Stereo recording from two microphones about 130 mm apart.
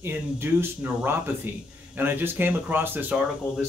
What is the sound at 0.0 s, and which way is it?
Speech, 15° right (ahead or behind).